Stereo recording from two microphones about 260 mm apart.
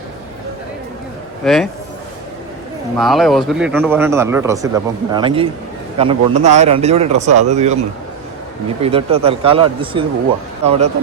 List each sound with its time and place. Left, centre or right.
1.4 s speech: centre
3.0 s a man's voice: centre; by 7.8 s right
8.8 s a man's voice: right